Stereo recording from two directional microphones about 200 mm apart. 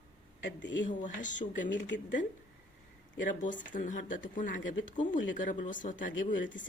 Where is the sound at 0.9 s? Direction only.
40° left (ahead or behind).